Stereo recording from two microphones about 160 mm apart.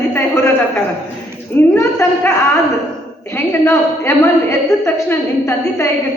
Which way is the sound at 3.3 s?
15° left (ahead or behind).